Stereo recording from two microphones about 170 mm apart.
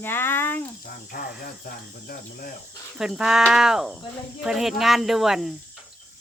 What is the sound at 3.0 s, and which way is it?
Speech, 5° right (ahead or behind).